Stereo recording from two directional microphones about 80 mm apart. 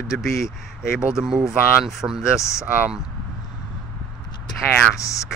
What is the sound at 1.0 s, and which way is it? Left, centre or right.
Speech, centre.